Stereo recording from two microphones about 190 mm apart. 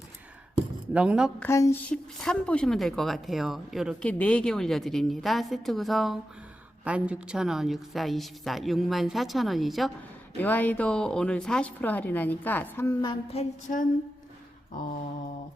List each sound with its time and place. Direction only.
0.9 s a woman's voice: 5° right (ahead or behind)
1.4 s a woman's voice: 15° left (ahead or behind)
13.3 s a sound: 35° left (ahead or behind)